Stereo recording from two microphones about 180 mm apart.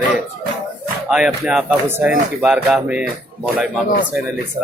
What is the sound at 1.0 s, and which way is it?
Speech, centre (ahead or behind).